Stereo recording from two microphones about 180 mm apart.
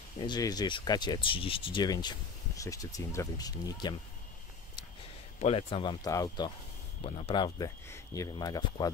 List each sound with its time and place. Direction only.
0.2 s speech: 20° left (ahead or behind)
5.4 s speech: 35° left (ahead or behind)
7.0 s speech: 35° left (ahead or behind)